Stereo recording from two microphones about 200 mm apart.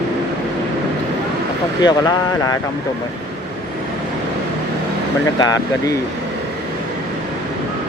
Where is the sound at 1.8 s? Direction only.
20° left (ahead or behind).